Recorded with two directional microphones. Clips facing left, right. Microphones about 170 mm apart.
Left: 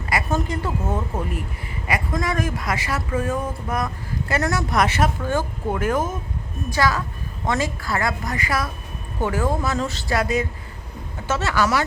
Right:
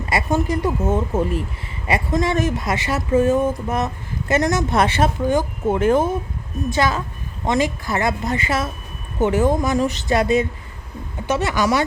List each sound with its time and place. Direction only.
0.0 s speech: 25° right (ahead or behind)
5.2 s speech: 15° right (ahead or behind)